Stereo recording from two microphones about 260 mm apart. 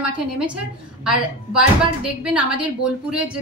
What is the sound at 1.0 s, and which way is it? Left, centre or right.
Speech, centre.